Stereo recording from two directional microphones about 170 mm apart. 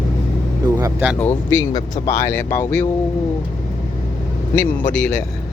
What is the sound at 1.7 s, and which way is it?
Speech, 25° left (ahead or behind).